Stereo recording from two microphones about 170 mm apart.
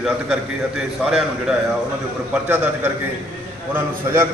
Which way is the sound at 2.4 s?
10° right (ahead or behind).